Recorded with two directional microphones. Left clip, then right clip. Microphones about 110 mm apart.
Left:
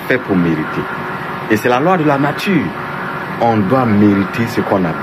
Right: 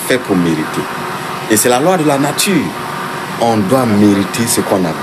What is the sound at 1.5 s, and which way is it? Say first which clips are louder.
Speech: right 1 dB; 25° right (ahead or behind).